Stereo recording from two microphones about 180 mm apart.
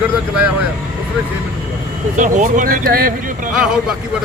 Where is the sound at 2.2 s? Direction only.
45° right (ahead or behind).